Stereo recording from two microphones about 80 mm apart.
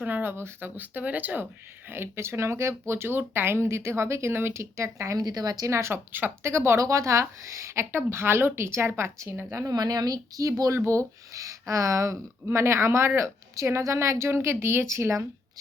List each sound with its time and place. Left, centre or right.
0.0 s speech: right
5.2 s speech: right
5.9 s speech: right
9.7 s speech: right